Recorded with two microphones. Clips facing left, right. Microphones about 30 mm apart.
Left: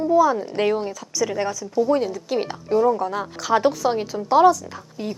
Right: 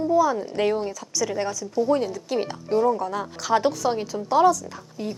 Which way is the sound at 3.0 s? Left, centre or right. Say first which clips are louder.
Left 2 dB; centre.